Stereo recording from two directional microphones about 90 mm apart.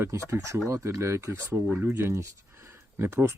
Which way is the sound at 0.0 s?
30° right (ahead or behind).